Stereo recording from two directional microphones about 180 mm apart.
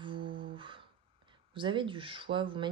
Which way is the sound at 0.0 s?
25° right (ahead or behind).